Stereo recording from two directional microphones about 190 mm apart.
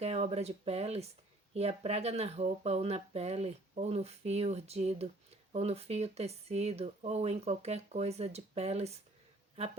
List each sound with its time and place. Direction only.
0.0 s speech: 35° right (ahead or behind)